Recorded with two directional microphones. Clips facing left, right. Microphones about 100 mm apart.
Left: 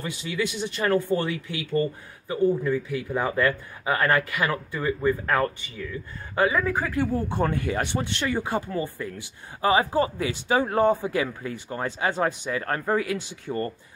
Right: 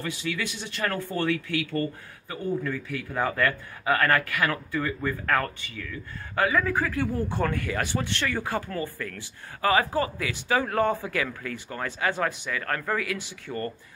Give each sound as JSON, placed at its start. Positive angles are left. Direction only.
{"t": 0.0, "sound": "speech", "side_deg": 20}